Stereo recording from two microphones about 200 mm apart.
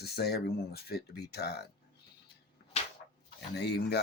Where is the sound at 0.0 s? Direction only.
55° left (ahead or behind).